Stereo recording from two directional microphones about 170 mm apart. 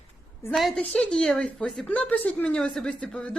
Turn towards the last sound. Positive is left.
turn(degrees=5)  # may be behind; listen again after turning